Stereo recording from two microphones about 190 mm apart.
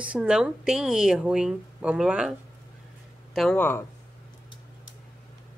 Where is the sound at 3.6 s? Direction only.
10° left (ahead or behind).